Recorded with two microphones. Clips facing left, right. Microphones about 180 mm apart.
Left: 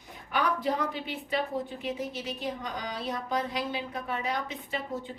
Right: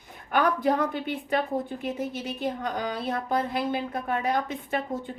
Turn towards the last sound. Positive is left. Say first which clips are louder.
# right 5 dB
turn(degrees=-50)  # may be behind; listen again after turning